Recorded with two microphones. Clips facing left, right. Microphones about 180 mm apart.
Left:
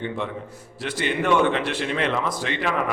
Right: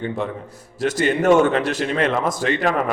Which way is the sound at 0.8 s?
45° right (ahead or behind).